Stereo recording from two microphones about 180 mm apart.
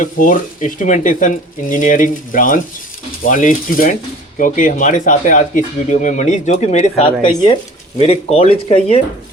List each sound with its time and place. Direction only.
0.0 s speech: 50° left (ahead or behind); by 9.0 s 30° left (ahead or behind)